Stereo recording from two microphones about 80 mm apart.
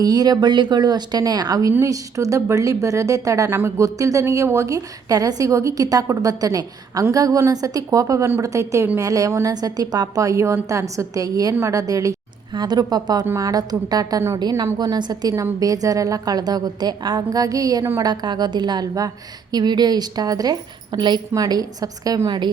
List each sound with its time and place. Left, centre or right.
0.0 s a woman's voice: right
3.5 s speech: right
3.8 s a woman's voice: right
12.5 s a woman's voice: right
14.9 s a woman's voice: right
15.6 s a woman's voice: right
18.0 s a woman's voice: right